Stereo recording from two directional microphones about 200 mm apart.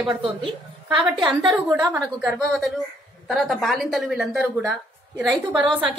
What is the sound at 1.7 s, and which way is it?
Speech, 15° right (ahead or behind).